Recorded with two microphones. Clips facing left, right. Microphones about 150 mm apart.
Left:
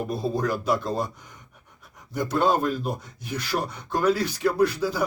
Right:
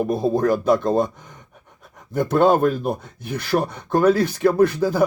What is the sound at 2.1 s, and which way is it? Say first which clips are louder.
Speech: right 6 dB; 55° right (ahead or behind).